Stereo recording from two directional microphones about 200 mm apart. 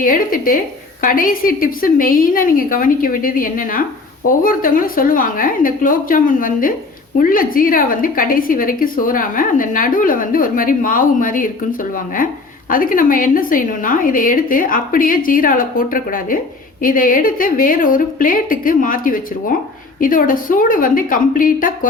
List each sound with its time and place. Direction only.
0.0 s a woman's voice: 45° left (ahead or behind)